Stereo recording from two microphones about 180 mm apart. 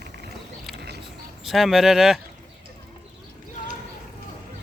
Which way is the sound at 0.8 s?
65° right (ahead or behind).